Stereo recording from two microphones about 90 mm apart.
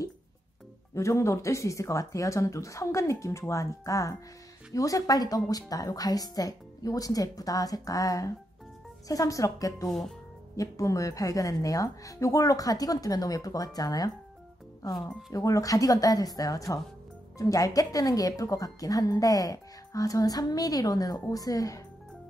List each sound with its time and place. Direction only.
0.9 s a woman's voice: 35° left (ahead or behind)
9.8 s speech: 5° left (ahead or behind)
10.5 s a woman's voice: 40° left (ahead or behind)
15.0 s speech: 5° right (ahead or behind)
15.3 s speech: 40° left (ahead or behind)